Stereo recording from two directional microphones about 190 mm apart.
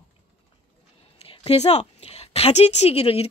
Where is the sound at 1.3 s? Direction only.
30° left (ahead or behind).